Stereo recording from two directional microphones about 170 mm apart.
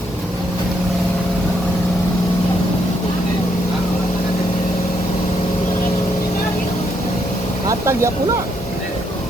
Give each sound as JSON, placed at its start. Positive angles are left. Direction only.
{"t": 7.7, "sound": "speech", "side_deg": -15}